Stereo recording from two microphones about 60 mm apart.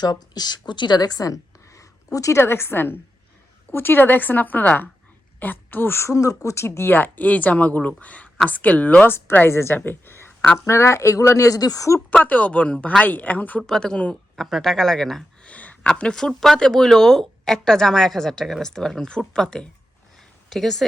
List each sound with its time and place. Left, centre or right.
0.4 s speech: left
0.9 s a sound: left
2.1 s speech: left
2.4 s a woman's voice: left
6.1 s speech: left
9.0 s speech: left
10.7 s speech: left
12.2 s speech: left
13.6 s a woman's voice: centre
15.4 s a woman's voice: left
20.1 s a sound: centre